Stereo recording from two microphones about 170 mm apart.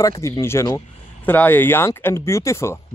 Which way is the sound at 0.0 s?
20° left (ahead or behind).